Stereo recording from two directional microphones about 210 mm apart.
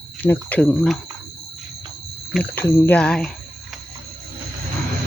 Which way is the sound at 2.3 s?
10° left (ahead or behind).